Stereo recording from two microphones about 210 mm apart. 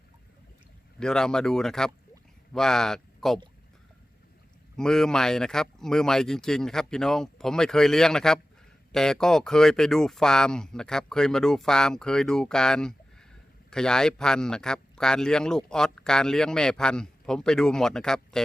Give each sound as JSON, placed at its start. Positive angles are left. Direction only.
{"t": 0.9, "sound": "speech", "side_deg": 5}
{"t": 4.8, "sound": "speech", "side_deg": 5}